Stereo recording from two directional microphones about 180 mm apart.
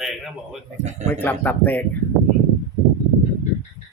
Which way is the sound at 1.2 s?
10° left (ahead or behind).